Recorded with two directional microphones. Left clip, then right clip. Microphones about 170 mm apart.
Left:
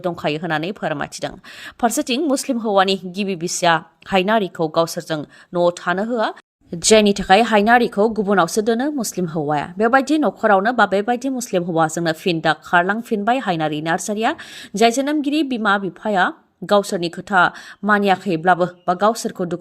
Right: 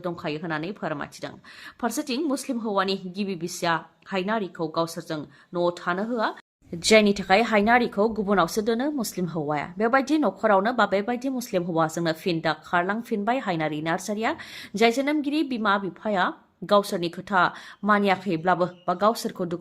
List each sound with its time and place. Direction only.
0.0 s a woman's voice: 45° left (ahead or behind); by 19.5 s 25° left (ahead or behind)